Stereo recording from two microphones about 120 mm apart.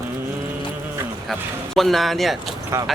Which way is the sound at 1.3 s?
Centre (ahead or behind).